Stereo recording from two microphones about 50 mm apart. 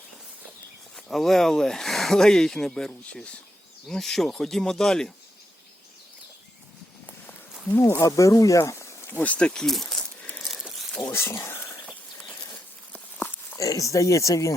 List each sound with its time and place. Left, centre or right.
1.1 s speech: centre
7.8 s speech: left
9.1 s speech: left
9.5 s speech: centre
10.4 s crumpling: centre
11.1 s speech: left
12.9 s a sound: left
13.6 s speech: left